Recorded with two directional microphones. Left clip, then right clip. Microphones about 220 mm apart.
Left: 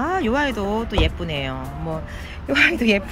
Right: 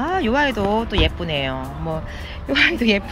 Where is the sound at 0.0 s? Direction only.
15° left (ahead or behind).